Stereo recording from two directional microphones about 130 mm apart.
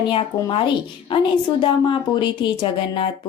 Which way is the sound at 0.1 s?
40° left (ahead or behind).